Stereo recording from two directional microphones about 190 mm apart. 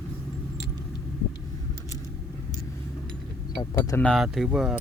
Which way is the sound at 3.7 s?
10° left (ahead or behind).